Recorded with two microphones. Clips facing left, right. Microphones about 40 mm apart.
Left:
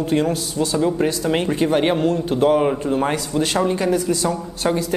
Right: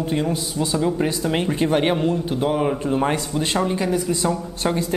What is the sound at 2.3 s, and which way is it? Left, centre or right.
A man's voice, centre.